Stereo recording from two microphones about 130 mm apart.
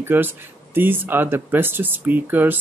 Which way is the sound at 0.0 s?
15° right (ahead or behind).